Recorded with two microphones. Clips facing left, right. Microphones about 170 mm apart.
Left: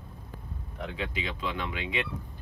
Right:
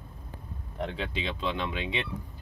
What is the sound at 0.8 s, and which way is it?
Speech, 30° right (ahead or behind).